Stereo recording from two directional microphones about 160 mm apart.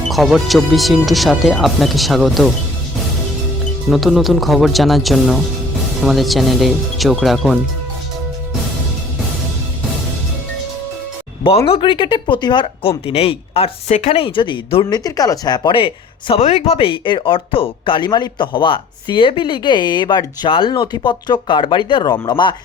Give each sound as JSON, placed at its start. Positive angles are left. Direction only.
{"t": 0.1, "sound": "speech", "side_deg": 0}
{"t": 3.8, "sound": "speech", "side_deg": 0}
{"t": 11.4, "sound": "speech", "side_deg": 35}